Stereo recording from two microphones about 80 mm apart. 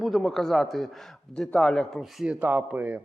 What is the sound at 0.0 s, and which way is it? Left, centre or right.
Speech, centre.